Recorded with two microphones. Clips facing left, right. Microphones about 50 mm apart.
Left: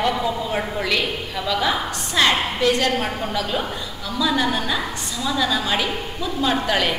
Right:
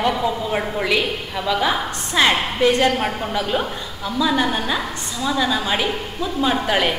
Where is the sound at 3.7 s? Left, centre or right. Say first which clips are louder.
Right 3 dB; centre.